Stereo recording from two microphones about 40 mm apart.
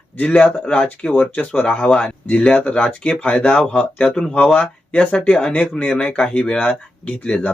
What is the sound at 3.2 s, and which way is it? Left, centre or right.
Speech, left.